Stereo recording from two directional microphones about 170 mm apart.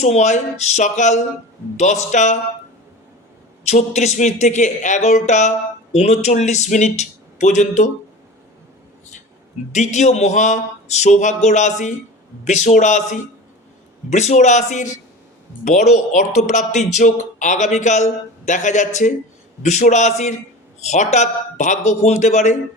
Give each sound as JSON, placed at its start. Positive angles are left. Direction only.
{"t": 0.0, "sound": "speech", "side_deg": 45}
{"t": 3.7, "sound": "speech", "side_deg": 40}
{"t": 9.7, "sound": "speech", "side_deg": 45}